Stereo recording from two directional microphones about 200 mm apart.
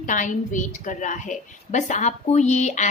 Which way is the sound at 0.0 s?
40° left (ahead or behind).